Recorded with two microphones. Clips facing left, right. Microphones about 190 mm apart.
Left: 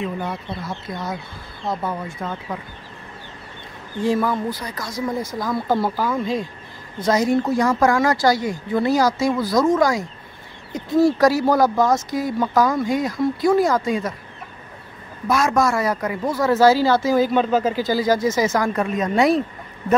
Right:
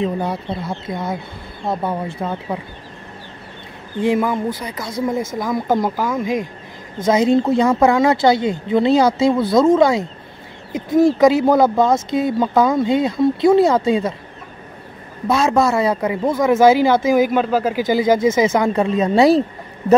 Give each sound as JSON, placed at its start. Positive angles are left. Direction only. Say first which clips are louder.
{"t": 0.0, "sound": "speech", "louder": "right 5 dB", "side_deg": -35}
{"t": 4.0, "sound": "speech", "louder": "right 3 dB", "side_deg": -15}
{"t": 15.2, "sound": "speech", "louder": "right 3 dB", "side_deg": -25}
{"t": 17.8, "sound": "speech", "louder": "right 4 dB", "side_deg": -20}